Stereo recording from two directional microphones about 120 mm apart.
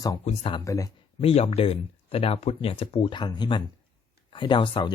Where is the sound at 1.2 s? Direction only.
60° left (ahead or behind).